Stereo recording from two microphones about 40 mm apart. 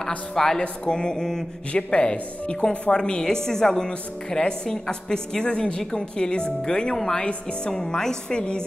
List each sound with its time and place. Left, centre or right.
0.3 s speech: centre
1.7 s speech: left
5.4 s speech: left